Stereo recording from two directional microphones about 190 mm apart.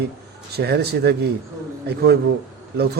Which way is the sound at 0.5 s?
60° right (ahead or behind).